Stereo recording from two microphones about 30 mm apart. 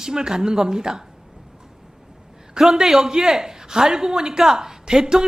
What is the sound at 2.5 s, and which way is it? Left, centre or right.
A woman's voice, centre.